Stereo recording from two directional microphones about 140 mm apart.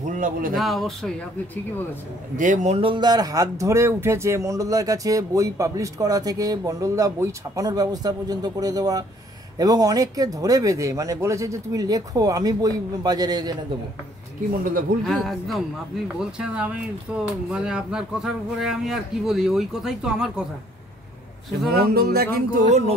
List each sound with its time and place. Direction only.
0.1 s speech: 85° right
0.6 s speech: centre (ahead or behind)
2.3 s a man's voice: 65° right (ahead or behind)
2.8 s speech: 35° right (ahead or behind)
14.6 s music: 85° right
15.0 s speech: centre (ahead or behind)
21.9 s music: 90° right; by 22.9 s 55° right (ahead or behind)